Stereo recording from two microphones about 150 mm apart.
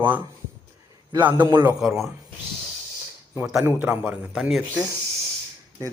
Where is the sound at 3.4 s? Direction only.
10° right (ahead or behind).